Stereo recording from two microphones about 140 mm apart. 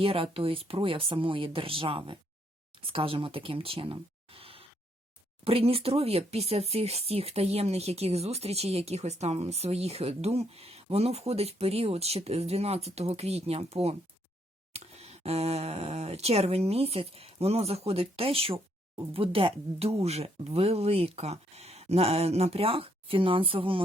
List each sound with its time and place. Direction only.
0.0 s speech: 40° right (ahead or behind)